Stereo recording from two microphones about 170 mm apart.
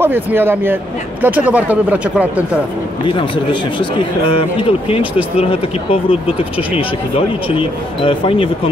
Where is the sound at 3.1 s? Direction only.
30° left (ahead or behind).